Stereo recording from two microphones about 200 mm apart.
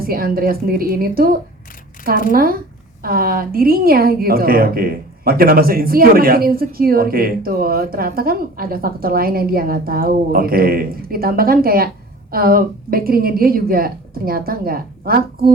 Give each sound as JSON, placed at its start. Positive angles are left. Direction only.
{"t": 0.0, "sound": "a woman's voice", "side_deg": -50}